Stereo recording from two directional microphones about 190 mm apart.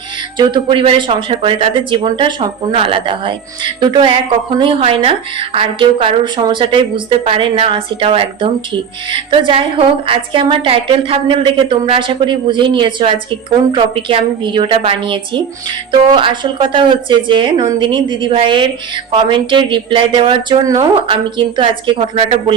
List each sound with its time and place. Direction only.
0.3 s speech: 25° right (ahead or behind)